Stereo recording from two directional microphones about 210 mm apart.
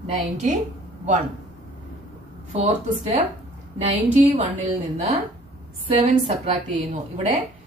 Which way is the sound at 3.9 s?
35° right (ahead or behind).